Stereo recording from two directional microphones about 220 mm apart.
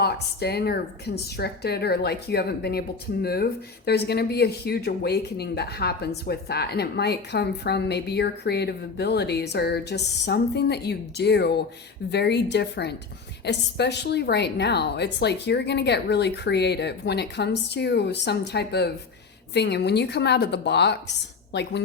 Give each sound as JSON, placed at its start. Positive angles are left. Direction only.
{"t": 0.0, "sound": "a woman's voice", "side_deg": 45}